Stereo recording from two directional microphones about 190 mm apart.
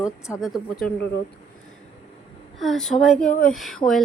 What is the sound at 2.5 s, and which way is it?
Speech, centre (ahead or behind).